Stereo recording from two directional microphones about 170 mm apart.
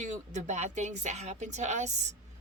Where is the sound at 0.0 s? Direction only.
45° right (ahead or behind).